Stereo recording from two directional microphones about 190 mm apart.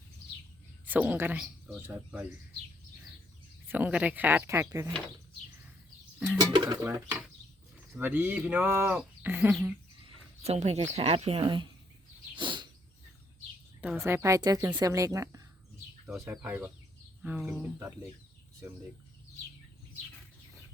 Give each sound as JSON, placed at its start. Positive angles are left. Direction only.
{"t": 0.9, "sound": "speech", "side_deg": -10}
{"t": 3.7, "sound": "speech", "side_deg": -10}
{"t": 6.3, "sound": "speech", "side_deg": -20}
{"t": 10.4, "sound": "speech", "side_deg": -35}
{"t": 12.4, "sound": "bird", "side_deg": -25}
{"t": 13.8, "sound": "speech", "side_deg": -15}